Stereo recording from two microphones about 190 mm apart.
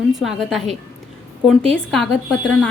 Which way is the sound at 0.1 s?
Centre (ahead or behind).